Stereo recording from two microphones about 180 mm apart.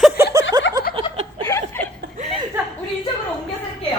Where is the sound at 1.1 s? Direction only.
35° right (ahead or behind).